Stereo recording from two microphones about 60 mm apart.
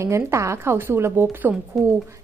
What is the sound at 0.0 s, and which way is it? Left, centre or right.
A woman's voice, right.